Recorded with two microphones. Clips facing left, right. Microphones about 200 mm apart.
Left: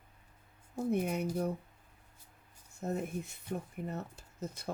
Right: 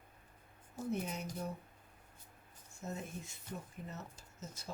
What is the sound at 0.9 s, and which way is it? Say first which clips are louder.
Speech: left 7 dB; 60° left (ahead or behind).